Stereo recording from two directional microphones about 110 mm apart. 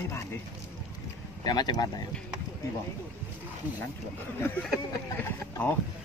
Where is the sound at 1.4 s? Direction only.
35° left (ahead or behind).